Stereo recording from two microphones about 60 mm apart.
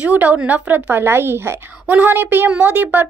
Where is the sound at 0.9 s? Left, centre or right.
Right.